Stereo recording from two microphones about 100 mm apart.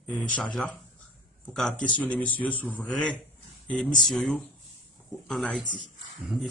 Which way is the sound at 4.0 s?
Centre (ahead or behind).